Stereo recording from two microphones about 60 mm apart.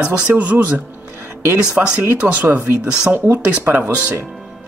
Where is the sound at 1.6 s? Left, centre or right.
Centre.